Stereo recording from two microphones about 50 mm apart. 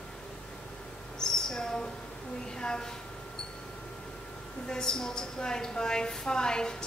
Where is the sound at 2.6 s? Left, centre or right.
Centre.